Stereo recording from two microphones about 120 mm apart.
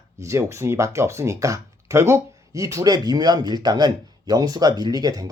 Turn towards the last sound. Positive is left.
turn(degrees=-35)  # may be behind; listen again after turning